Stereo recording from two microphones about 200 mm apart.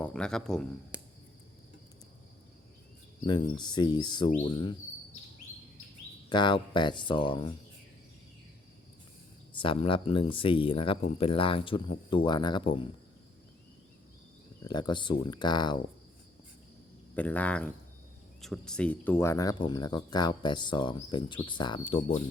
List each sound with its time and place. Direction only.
0.0 s speech: 5° left (ahead or behind)
3.2 s speech: 25° left (ahead or behind)
6.2 s speech: 20° left (ahead or behind)
9.6 s speech: 25° left (ahead or behind)
14.6 s speech: 20° left (ahead or behind)
17.2 s speech: 5° left (ahead or behind); by 22.0 s 25° left (ahead or behind)